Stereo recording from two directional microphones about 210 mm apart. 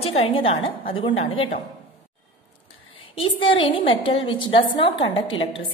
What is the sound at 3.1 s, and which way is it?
A woman's voice, 25° left (ahead or behind).